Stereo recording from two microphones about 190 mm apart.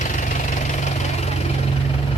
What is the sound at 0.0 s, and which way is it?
Engine, 40° left (ahead or behind).